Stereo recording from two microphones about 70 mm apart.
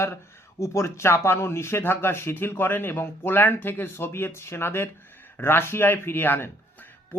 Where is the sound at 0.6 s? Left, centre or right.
Left.